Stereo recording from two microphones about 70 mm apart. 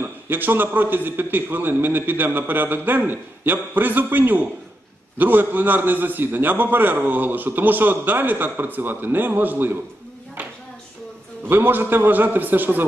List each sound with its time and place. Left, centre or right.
0.0 s a man's voice: right
11.4 s a man's voice: right